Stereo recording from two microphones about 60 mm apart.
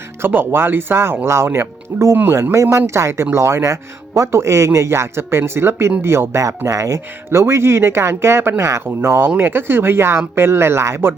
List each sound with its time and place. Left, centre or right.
0.2 s speech: right
2.3 s speech: right
4.3 s speech: right
6.7 s speech: right